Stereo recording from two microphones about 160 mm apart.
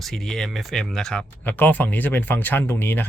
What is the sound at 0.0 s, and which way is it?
Speech, centre (ahead or behind).